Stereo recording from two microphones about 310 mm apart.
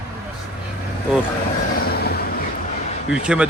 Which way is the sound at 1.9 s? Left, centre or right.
Left.